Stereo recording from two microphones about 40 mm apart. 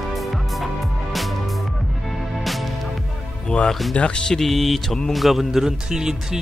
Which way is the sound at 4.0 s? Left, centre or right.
Left.